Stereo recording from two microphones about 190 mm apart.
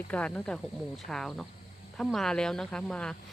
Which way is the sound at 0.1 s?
5° left (ahead or behind).